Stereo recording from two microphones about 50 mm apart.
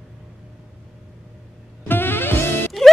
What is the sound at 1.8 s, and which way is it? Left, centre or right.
Music, left.